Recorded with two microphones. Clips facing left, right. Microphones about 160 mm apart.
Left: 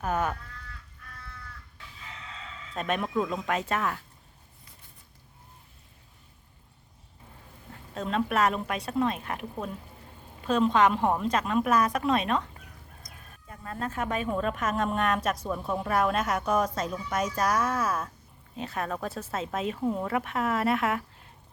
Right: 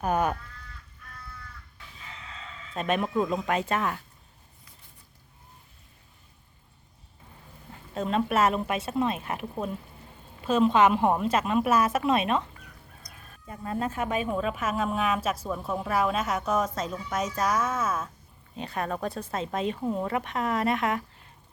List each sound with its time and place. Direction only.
0.0 s a woman's voice: 15° right (ahead or behind)
2.7 s a woman's voice: 5° right (ahead or behind)
7.9 s a woman's voice: 5° right (ahead or behind)
13.5 s a woman's voice: 10° right (ahead or behind)